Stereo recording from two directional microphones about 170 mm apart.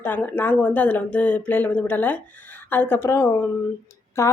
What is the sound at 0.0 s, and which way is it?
A woman's voice, 10° left (ahead or behind).